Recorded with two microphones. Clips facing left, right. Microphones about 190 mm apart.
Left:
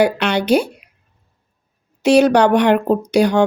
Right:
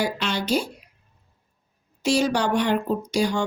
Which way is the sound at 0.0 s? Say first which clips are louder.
Left 10 dB; 65° left (ahead or behind).